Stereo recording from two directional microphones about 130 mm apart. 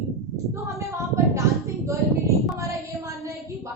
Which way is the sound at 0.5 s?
25° right (ahead or behind).